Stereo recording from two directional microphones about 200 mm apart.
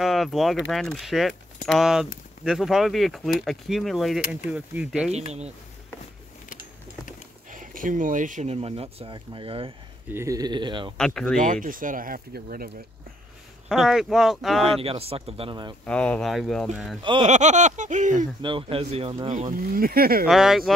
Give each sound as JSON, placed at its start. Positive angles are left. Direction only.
{"t": 0.0, "sound": "speech", "side_deg": 0}
{"t": 7.5, "sound": "speech", "side_deg": -40}
{"t": 10.0, "sound": "speech", "side_deg": -15}
{"t": 11.0, "sound": "speech", "side_deg": 5}
{"t": 11.3, "sound": "speech", "side_deg": -40}
{"t": 13.7, "sound": "speech", "side_deg": 0}
{"t": 14.8, "sound": "speech", "side_deg": -30}
{"t": 15.8, "sound": "speech", "side_deg": 5}
{"t": 17.0, "sound": "speech", "side_deg": -25}
{"t": 17.3, "sound": "speech", "side_deg": -35}
{"t": 18.4, "sound": "speech", "side_deg": -25}
{"t": 19.7, "sound": "speech", "side_deg": -45}
{"t": 20.2, "sound": "speech", "side_deg": 0}